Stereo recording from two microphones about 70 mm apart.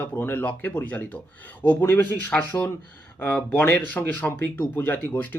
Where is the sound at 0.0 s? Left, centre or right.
Left.